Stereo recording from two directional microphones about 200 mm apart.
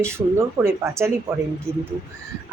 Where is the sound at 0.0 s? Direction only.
15° right (ahead or behind).